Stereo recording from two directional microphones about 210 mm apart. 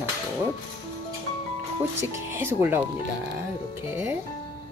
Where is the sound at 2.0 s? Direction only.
10° right (ahead or behind).